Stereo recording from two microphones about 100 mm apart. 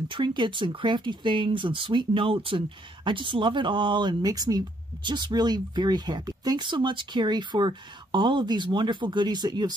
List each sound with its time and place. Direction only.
0.1 s speech: 50° right (ahead or behind)